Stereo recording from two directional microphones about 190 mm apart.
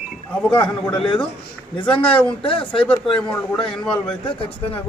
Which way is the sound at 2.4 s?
25° left (ahead or behind).